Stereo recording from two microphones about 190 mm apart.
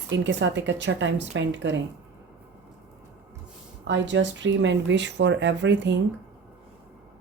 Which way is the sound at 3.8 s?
70° right (ahead or behind).